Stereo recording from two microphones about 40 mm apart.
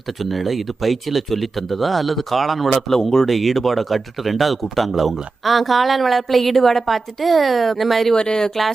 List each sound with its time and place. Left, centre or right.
0.2 s speech: centre
8.1 s speech: left